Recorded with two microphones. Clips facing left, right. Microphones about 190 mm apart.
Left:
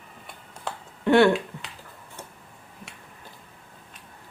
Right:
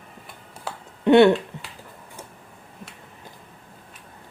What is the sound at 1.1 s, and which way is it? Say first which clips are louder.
Speech: right 4 dB; 20° right (ahead or behind).